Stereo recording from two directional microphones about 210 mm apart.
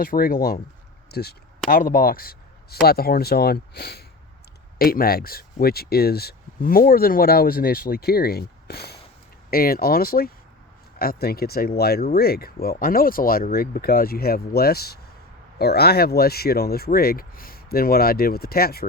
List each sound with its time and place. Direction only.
0.0 s speech: 45° left (ahead or behind)